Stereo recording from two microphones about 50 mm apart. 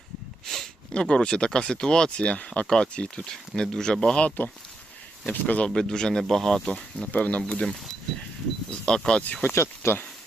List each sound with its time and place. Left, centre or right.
0.4 s a sound: centre
0.9 s speech: centre
5.3 s speech: left
5.6 s speech: centre
6.7 s speech: left
7.1 s speech: left
8.9 s speech: centre
9.5 s speech: left